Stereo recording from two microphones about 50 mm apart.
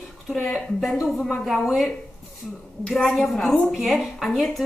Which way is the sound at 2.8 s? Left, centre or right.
Centre.